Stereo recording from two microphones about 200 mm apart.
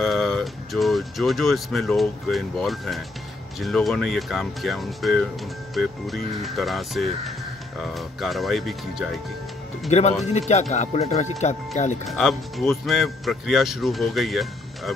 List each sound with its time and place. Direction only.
0.0 s speech: centre (ahead or behind)
9.8 s speech: 35° left (ahead or behind)
12.1 s speech: centre (ahead or behind)